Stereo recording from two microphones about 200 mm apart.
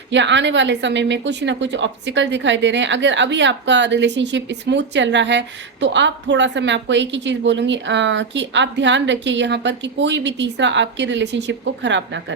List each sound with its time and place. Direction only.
0.1 s a woman's voice: 65° right (ahead or behind)